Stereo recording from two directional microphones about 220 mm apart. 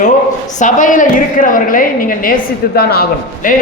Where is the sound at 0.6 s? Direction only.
35° left (ahead or behind).